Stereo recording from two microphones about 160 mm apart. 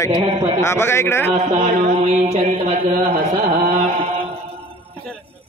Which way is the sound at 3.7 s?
40° right (ahead or behind).